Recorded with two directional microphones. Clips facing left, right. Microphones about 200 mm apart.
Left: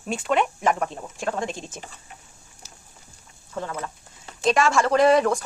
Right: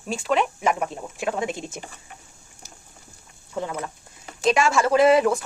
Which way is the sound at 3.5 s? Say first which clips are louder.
Right 2 dB; 15° right (ahead or behind).